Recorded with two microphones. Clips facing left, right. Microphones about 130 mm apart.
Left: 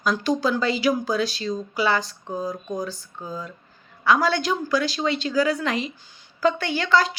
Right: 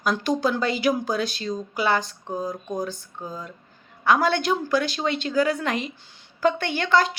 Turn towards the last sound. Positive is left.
turn(degrees=-50)  # may be behind; listen again after turning